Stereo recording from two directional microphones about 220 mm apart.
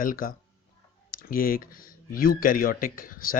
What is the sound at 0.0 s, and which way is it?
Speech, 40° left (ahead or behind).